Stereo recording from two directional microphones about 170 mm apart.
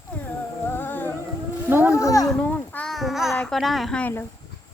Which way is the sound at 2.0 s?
15° left (ahead or behind).